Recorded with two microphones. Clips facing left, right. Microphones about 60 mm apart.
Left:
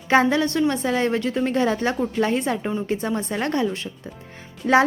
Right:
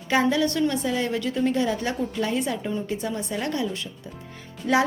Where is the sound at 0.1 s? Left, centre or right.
Left.